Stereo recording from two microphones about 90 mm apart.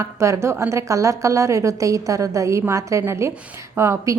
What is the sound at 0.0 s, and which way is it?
A woman's voice, 30° right (ahead or behind).